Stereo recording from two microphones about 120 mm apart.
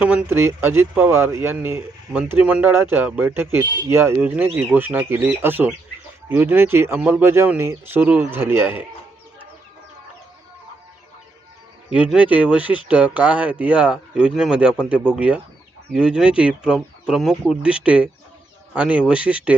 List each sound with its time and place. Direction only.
0.0 s speech: 10° right (ahead or behind)
11.9 s speech: 10° right (ahead or behind)